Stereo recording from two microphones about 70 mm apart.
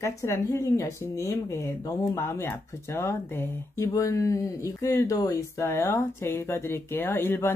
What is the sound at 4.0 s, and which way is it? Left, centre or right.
Speech, left.